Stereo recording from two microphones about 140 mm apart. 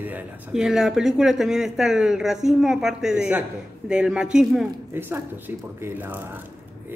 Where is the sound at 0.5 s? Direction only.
5° right (ahead or behind).